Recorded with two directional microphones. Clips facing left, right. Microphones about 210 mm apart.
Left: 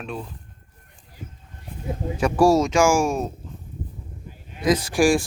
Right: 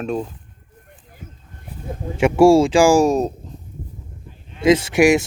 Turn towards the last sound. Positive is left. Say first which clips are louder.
# right 5 dB
turn(degrees=-20)  # may be behind; listen again after turning